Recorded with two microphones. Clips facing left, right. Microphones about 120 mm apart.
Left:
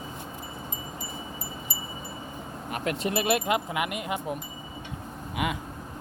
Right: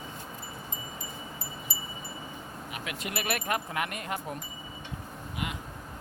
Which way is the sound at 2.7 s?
45° left (ahead or behind).